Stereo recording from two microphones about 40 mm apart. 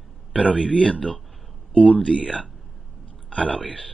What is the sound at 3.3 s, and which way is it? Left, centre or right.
Speech, left.